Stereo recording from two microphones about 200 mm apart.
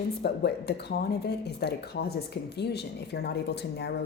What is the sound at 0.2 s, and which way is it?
Speech, 55° left (ahead or behind).